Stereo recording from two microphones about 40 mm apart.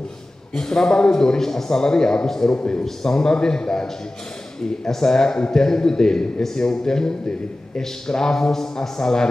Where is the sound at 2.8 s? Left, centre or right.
Centre.